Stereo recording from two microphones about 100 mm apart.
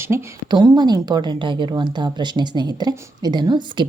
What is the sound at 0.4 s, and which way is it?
A woman's voice, 45° right (ahead or behind).